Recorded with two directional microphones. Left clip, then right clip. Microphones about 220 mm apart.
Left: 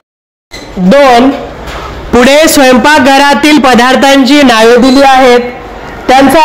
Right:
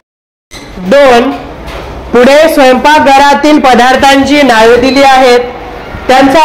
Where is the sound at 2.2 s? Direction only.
50° left (ahead or behind).